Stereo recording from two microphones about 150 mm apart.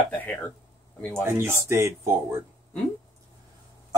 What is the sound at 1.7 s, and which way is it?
Speech, 15° right (ahead or behind).